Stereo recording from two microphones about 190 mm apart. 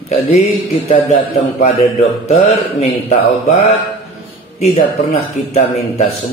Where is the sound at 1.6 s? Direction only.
35° left (ahead or behind).